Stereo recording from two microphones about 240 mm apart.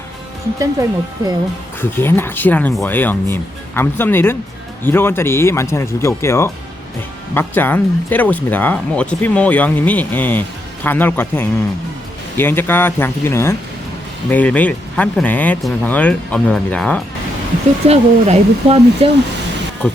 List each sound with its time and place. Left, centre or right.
0.6 s speech: centre
1.8 s speech: centre
17.8 s speech: right